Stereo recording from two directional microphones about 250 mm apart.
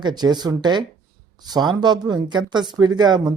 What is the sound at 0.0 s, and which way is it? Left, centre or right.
Speech, centre.